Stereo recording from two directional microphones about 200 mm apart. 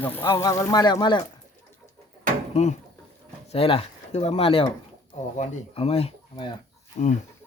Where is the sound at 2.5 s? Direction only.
35° left (ahead or behind).